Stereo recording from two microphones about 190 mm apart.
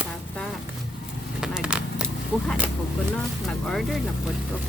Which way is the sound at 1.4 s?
5° right (ahead or behind).